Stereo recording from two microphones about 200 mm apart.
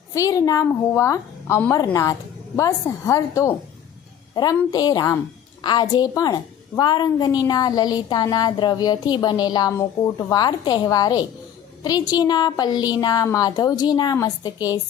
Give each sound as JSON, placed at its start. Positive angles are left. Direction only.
{"t": 0.1, "sound": "a woman's voice", "side_deg": 15}